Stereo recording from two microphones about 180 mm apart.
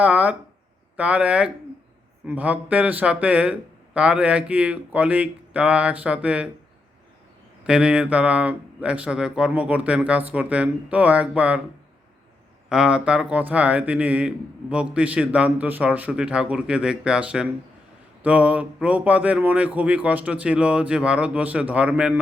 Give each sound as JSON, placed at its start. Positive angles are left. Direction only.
{"t": 0.0, "sound": "a sound", "side_deg": -5}
{"t": 0.9, "sound": "speech", "side_deg": -5}
{"t": 7.7, "sound": "speech", "side_deg": -5}
{"t": 12.6, "sound": "speech", "side_deg": -5}